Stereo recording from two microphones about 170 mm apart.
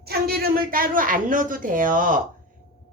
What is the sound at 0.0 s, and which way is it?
Speech, 65° right (ahead or behind).